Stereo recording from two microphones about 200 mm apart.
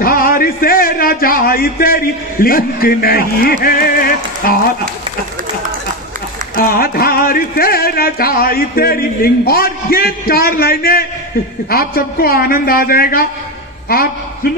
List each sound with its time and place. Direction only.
0.0 s a man's voice: 45° left (ahead or behind)
6.5 s speech: 45° left (ahead or behind)